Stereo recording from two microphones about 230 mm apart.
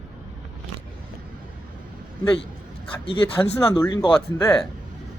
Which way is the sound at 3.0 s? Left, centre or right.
Left.